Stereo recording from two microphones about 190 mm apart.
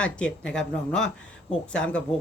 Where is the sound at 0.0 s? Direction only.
5° left (ahead or behind).